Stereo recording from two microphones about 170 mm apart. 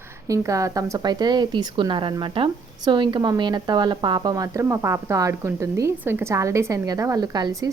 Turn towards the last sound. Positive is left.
turn(degrees=-20)  # may be behind; listen again after turning